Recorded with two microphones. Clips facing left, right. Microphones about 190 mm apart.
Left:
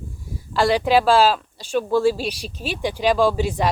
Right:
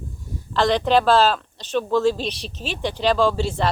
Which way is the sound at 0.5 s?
10° left (ahead or behind).